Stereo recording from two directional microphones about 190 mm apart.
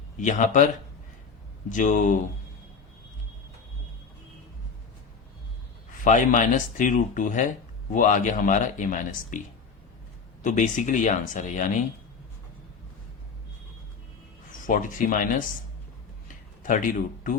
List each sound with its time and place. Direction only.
0.2 s speech: 40° left (ahead or behind)
1.7 s speech: 40° left (ahead or behind)
6.1 s speech: 40° left (ahead or behind)
10.4 s speech: 40° left (ahead or behind)
14.7 s speech: 45° left (ahead or behind)
16.6 s speech: 45° left (ahead or behind)